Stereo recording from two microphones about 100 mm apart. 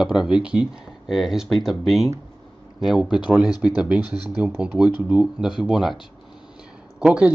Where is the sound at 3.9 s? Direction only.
45° left (ahead or behind).